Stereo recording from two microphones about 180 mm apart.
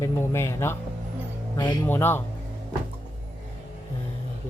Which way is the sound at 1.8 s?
10° left (ahead or behind).